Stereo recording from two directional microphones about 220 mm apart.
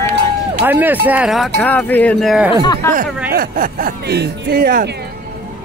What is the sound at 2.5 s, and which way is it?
Speech, 20° left (ahead or behind).